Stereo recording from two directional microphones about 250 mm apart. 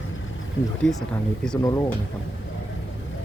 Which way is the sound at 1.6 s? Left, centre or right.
Centre.